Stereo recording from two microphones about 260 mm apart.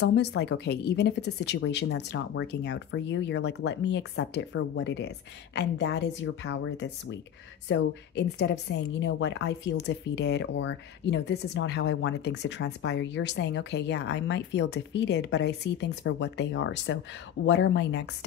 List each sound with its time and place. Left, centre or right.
0.1 s a woman's voice: left